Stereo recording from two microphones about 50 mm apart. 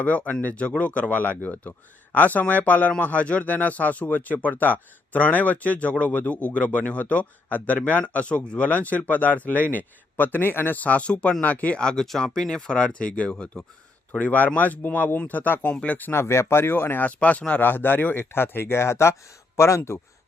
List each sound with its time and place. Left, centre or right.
0.0 s speech: left
10.8 s speech: left
11.8 s speech: centre
14.1 s speech: left
15.7 s speech: left
16.1 s speech: left
17.1 s speech: left
17.6 s speech: left